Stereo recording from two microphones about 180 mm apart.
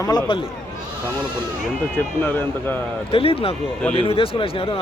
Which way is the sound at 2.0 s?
10° left (ahead or behind).